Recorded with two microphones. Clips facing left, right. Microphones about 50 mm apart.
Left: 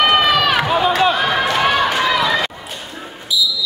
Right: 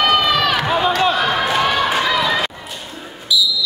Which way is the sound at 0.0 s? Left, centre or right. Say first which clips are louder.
Left 2 dB; centre.